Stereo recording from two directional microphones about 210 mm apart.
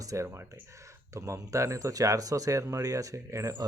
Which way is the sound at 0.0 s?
15° right (ahead or behind).